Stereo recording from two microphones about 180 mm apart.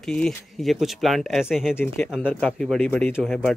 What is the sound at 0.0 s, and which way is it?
Speech, 5° left (ahead or behind).